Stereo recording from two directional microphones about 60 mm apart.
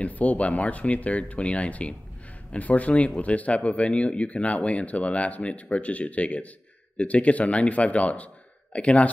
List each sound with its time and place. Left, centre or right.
0.0 s speech: left